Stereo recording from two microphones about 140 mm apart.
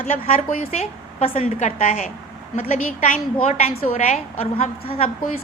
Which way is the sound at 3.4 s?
50° left (ahead or behind).